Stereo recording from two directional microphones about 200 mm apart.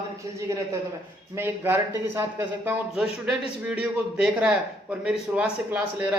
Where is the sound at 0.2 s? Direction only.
15° right (ahead or behind).